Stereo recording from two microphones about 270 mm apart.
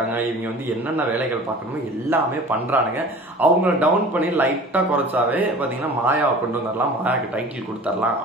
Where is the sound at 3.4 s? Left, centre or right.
Centre.